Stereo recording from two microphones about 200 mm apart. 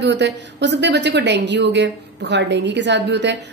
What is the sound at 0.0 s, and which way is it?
A woman's voice, 60° right (ahead or behind).